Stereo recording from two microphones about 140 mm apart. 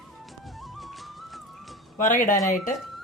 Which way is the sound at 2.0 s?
70° left (ahead or behind).